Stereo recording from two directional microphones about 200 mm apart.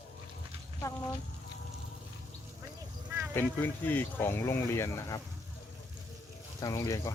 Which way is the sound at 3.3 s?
10° left (ahead or behind).